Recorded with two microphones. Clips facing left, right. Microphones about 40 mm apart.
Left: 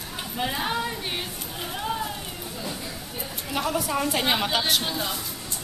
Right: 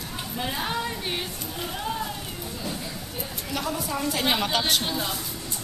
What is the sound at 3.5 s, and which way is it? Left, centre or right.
Speech, centre.